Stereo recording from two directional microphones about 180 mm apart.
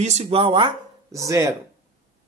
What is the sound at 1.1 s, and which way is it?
Speech, 20° right (ahead or behind).